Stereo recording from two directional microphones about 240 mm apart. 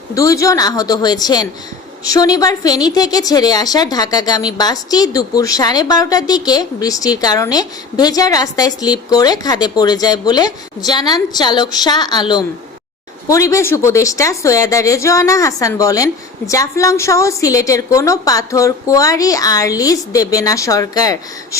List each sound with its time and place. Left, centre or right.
0.1 s a woman's voice: centre